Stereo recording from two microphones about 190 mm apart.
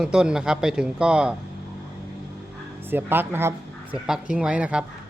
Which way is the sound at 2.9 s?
10° right (ahead or behind).